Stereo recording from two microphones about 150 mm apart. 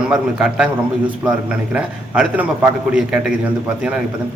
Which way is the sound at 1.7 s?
10° right (ahead or behind).